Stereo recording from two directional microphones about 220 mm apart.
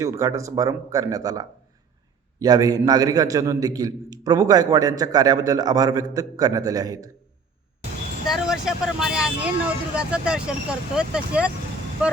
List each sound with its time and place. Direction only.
0.0 s a man's voice: 15° right (ahead or behind)
8.3 s speech: centre (ahead or behind)